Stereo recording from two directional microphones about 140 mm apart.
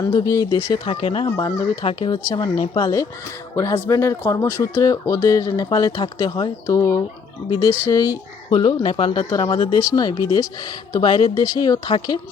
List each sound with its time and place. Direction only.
0.0 s speech: 25° left (ahead or behind)
1.4 s speech: 25° left (ahead or behind)
1.8 s speech: 40° left (ahead or behind)
2.2 s speech: 25° left (ahead or behind)
7.5 s speech: 25° left (ahead or behind)
8.4 s speech: 40° left (ahead or behind)